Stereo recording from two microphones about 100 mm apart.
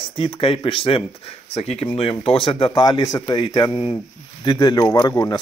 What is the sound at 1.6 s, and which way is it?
Speech, 85° left.